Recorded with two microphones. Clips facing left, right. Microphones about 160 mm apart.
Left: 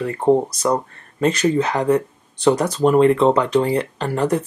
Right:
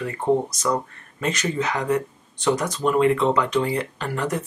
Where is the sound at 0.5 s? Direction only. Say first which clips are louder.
Left 4 dB; 35° left (ahead or behind).